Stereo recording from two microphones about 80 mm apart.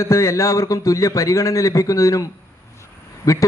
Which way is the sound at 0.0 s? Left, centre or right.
Left.